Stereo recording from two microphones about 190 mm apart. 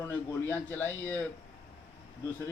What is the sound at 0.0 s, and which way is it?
A man's voice, 10° left (ahead or behind).